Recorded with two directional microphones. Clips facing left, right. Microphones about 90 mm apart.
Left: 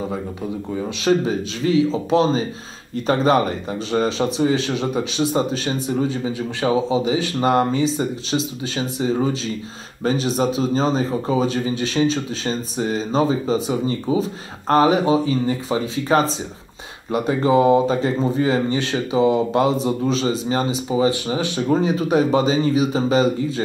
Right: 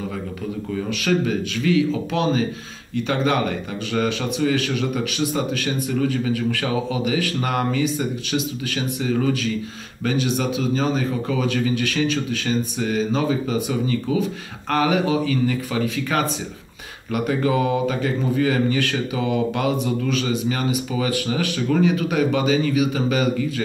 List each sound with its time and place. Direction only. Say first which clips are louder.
0.8 s speech: left 3 dB; 25° left (ahead or behind)